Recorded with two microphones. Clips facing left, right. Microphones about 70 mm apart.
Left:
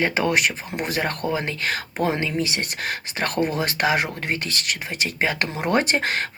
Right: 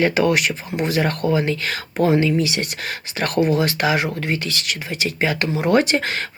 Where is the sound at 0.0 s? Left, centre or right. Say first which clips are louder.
Right 3 dB; left.